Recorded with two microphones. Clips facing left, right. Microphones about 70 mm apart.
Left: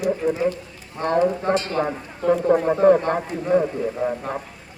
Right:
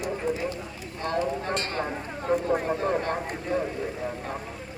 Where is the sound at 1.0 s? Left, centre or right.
Left.